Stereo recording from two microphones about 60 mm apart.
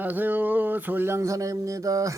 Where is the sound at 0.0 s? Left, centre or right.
Right.